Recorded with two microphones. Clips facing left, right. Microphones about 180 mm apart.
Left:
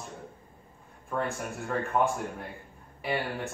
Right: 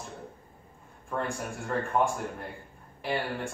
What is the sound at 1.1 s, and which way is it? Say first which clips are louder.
Speech: left 1 dB; centre (ahead or behind).